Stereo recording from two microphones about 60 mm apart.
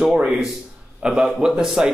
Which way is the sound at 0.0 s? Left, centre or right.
Centre.